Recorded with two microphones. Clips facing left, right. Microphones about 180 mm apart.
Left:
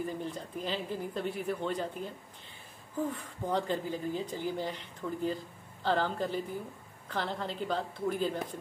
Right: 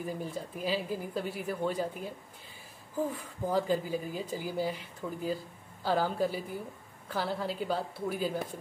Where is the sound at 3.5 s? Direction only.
5° right (ahead or behind).